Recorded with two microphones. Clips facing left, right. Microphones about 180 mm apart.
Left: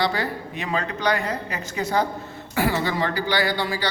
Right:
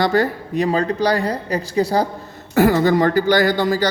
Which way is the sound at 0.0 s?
45° right (ahead or behind).